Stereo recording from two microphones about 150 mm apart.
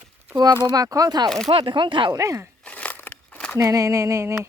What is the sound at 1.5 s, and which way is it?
Speech, 35° right (ahead or behind).